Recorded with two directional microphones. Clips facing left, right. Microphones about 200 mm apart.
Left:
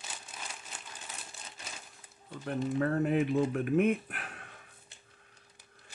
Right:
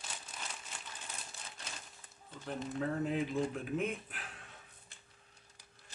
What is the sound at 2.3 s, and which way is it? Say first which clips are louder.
Speech: left 7 dB; 65° left (ahead or behind).